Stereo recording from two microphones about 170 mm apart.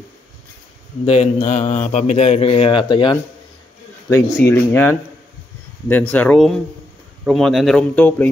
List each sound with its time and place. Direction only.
1.0 s speech: 40° left (ahead or behind)
4.1 s a man's voice: 15° left (ahead or behind)